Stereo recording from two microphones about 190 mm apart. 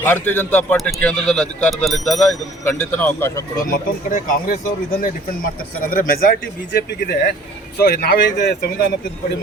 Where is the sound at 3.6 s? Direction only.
45° left (ahead or behind).